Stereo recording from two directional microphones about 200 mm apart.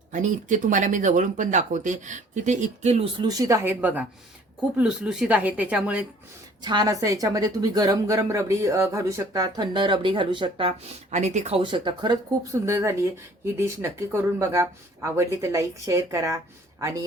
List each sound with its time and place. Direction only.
0.1 s speech: 40° right (ahead or behind)
3.2 s a woman's voice: 15° right (ahead or behind)
6.6 s a woman's voice: 20° right (ahead or behind)